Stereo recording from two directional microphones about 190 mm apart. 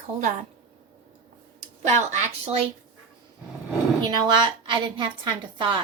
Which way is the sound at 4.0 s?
25° right (ahead or behind).